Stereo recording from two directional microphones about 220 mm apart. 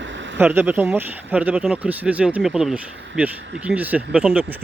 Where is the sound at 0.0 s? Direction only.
55° right (ahead or behind).